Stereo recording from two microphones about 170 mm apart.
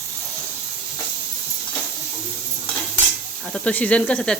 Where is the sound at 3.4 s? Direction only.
5° left (ahead or behind).